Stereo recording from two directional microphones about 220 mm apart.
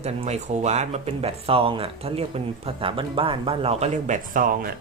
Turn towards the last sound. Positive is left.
turn(degrees=-40)  # may be behind; listen again after turning